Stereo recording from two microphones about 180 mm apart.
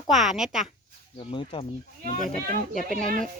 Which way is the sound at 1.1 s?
30° left (ahead or behind).